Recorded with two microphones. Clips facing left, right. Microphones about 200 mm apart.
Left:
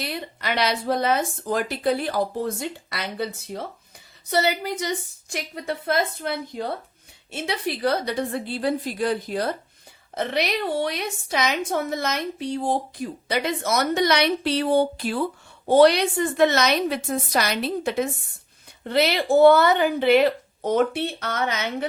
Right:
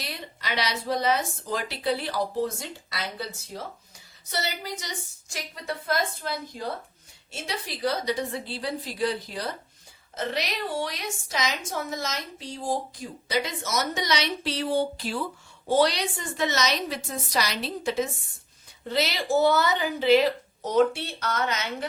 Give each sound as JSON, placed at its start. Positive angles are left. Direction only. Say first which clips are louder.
{"t": 0.0, "sound": "a woman's voice", "louder": "left 7 dB", "side_deg": 55}
{"t": 6.2, "sound": "a woman's voice", "louder": "left 4 dB", "side_deg": 60}